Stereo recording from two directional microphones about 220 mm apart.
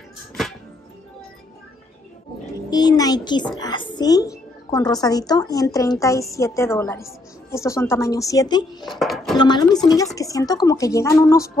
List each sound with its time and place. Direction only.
2.7 s a sound: 20° left (ahead or behind)
3.5 s a woman's voice: 20° left (ahead or behind)
8.8 s speech: centre (ahead or behind)
9.4 s a woman's voice: 20° left (ahead or behind)